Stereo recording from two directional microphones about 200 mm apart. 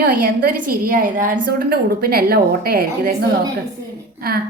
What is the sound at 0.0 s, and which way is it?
A woman's voice, 45° right (ahead or behind).